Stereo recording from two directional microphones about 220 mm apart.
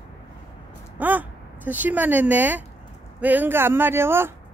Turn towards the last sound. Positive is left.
turn(degrees=-10)  # may be behind; listen again after turning